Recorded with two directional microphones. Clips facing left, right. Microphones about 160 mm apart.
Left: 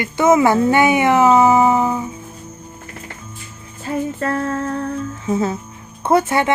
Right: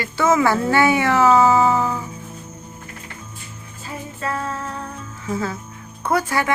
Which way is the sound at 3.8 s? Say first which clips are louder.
Left 8 dB; 55° left (ahead or behind).